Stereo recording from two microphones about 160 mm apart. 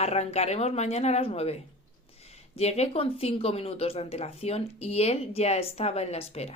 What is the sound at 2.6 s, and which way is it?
Speech, 40° left (ahead or behind).